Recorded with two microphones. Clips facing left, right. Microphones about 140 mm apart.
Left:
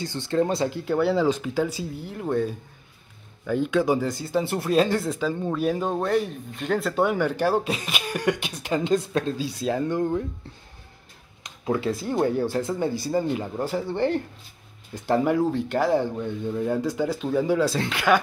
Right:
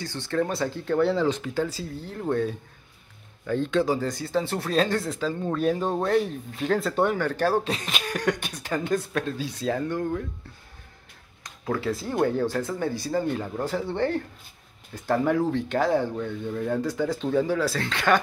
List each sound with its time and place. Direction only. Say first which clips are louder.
0.0 s speech: left 3 dB; 15° left (ahead or behind)
7.2 s speech: left 1 dB; 15° left (ahead or behind)
11.4 s speech: left 2 dB; 15° left (ahead or behind)
17.9 s speech: left 1 dB; 5° left (ahead or behind)